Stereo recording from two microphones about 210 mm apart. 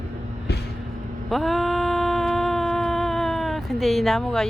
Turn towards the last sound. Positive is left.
turn(degrees=0)  # may be behind; listen again after turning